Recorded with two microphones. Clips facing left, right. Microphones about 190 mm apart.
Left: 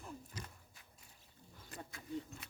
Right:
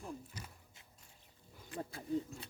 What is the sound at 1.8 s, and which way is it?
Speech, 30° right (ahead or behind).